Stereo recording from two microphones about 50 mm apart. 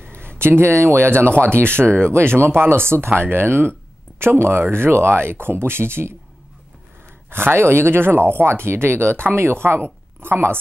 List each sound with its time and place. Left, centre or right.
0.0 s a sound: right
0.4 s speech: right
1.9 s speech: left
2.1 s speech: right
7.2 s speech: right